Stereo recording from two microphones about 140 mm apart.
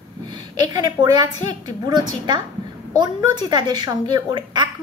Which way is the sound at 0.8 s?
30° right (ahead or behind).